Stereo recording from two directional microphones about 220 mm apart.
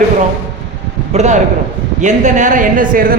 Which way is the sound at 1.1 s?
30° right (ahead or behind).